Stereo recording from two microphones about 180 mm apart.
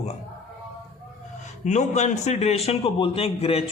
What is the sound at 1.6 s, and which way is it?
A man's voice, 40° left (ahead or behind).